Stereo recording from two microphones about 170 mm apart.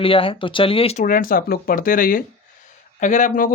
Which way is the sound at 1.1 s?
55° left (ahead or behind).